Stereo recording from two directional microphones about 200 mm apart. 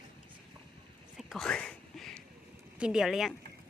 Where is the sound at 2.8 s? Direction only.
Centre (ahead or behind).